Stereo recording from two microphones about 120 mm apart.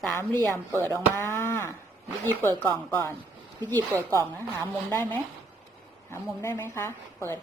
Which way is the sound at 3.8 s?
30° right (ahead or behind).